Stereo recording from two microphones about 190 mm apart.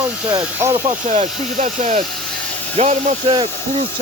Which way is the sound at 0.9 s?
35° right (ahead or behind).